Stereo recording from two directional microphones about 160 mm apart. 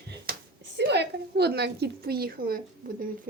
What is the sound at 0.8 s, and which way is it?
A woman's voice, 90° right.